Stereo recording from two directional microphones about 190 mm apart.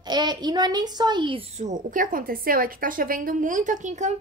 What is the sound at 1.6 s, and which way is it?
Speech, 45° right (ahead or behind).